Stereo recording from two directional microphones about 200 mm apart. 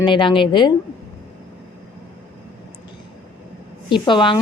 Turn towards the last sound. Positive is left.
turn(degrees=25)  # may be behind; listen again after turning